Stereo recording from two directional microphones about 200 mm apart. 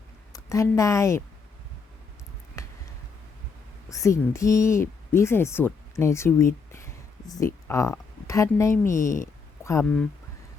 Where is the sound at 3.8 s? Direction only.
15° left (ahead or behind).